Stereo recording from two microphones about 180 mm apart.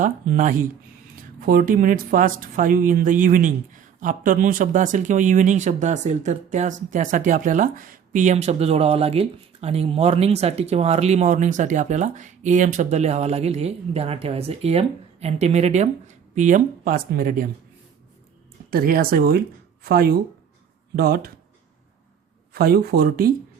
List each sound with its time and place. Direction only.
0.0 s speech: 45° right (ahead or behind)
18.7 s speech: 55° right (ahead or behind)
22.5 s speech: 60° right (ahead or behind)